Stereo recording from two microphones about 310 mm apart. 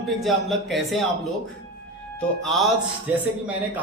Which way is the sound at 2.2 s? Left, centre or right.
Centre.